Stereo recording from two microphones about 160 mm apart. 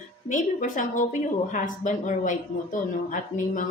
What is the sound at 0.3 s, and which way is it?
A woman's voice, 55° left (ahead or behind).